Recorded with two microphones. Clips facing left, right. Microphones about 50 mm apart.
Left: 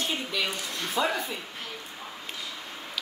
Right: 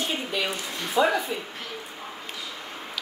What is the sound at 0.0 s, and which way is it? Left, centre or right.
Speech, centre.